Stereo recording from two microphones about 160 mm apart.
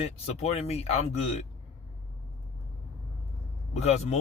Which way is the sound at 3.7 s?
45° left (ahead or behind).